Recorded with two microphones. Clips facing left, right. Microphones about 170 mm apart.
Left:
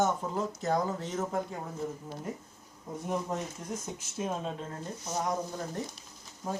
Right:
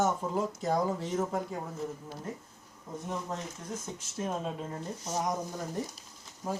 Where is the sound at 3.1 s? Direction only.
15° left (ahead or behind).